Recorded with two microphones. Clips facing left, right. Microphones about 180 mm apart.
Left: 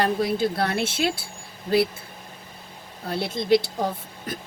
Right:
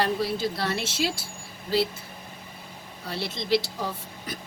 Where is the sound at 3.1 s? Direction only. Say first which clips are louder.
Left 6 dB; 50° left (ahead or behind).